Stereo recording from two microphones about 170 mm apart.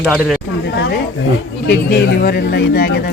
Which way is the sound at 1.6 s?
80° left.